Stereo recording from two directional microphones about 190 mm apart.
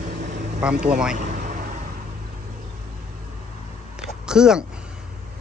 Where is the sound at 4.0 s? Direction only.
5° right (ahead or behind).